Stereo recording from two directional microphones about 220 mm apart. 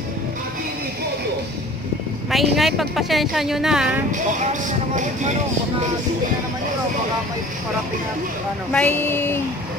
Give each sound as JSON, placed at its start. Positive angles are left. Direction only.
{"t": 2.3, "sound": "speech", "side_deg": 0}
{"t": 4.1, "sound": "speech", "side_deg": -35}
{"t": 8.7, "sound": "speech", "side_deg": 10}